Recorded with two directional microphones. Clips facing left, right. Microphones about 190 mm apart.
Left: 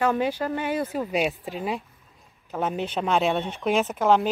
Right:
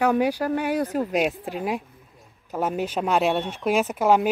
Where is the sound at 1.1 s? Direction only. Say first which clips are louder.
Even; centre (ahead or behind).